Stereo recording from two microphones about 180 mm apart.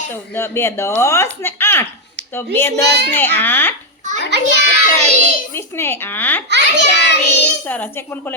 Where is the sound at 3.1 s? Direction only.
10° left (ahead or behind).